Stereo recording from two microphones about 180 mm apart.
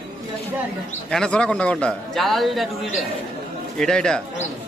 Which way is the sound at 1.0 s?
5° left (ahead or behind).